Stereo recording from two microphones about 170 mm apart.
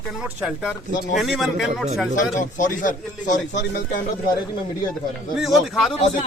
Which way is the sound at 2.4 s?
50° left (ahead or behind).